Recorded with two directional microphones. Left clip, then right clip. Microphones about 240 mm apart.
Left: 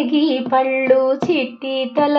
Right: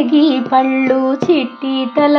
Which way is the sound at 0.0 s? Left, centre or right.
Right.